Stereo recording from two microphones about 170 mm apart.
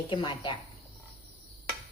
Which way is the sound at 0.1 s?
30° left (ahead or behind).